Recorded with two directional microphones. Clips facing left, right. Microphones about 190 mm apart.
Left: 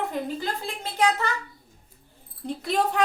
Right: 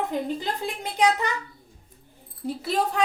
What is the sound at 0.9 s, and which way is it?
Speech, 15° right (ahead or behind).